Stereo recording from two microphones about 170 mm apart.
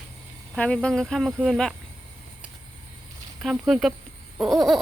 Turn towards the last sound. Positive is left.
turn(degrees=0)  # may be behind; listen again after turning